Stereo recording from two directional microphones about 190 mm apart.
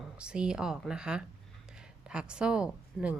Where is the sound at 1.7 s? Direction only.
5° right (ahead or behind).